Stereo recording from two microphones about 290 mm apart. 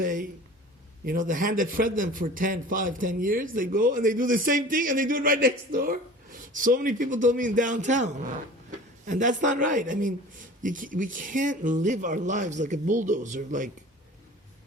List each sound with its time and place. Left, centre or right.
0.0 s a man's voice: right